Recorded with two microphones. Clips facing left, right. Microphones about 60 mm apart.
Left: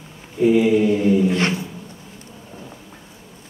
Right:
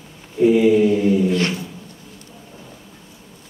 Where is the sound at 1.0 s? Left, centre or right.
Left.